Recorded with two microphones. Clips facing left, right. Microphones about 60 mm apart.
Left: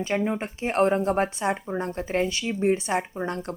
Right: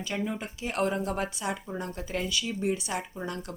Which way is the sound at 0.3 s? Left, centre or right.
Left.